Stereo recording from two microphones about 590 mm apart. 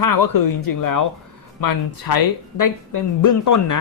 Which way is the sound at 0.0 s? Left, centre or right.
Left.